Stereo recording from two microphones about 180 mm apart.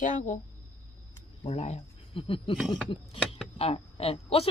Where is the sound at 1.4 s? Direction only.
35° left (ahead or behind).